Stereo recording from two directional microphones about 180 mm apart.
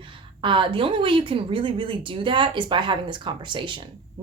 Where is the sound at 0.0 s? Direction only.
25° right (ahead or behind).